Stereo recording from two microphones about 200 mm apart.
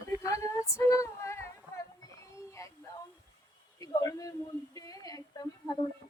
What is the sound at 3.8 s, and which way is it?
Speech, 20° left (ahead or behind).